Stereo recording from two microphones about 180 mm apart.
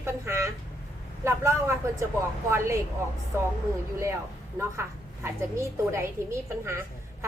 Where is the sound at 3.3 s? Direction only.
15° right (ahead or behind).